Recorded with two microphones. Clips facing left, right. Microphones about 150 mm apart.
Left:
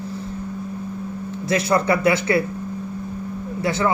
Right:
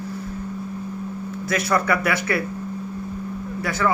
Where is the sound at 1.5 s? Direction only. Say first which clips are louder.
Left 3 dB; 25° left (ahead or behind).